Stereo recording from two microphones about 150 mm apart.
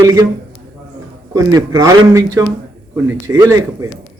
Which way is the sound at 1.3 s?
20° right (ahead or behind).